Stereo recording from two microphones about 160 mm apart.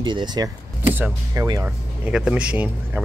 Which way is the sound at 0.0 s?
30° right (ahead or behind).